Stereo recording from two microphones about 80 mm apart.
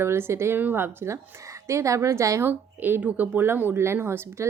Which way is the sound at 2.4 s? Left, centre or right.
Right.